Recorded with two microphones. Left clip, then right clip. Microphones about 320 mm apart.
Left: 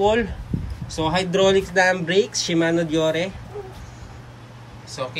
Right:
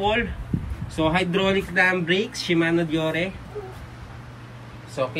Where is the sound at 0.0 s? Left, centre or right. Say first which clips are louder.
Left 4 dB; centre.